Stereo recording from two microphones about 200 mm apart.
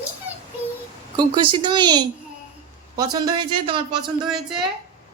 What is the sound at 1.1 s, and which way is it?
Speech, 25° right (ahead or behind).